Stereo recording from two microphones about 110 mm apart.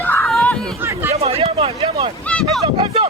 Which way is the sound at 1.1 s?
65° right (ahead or behind).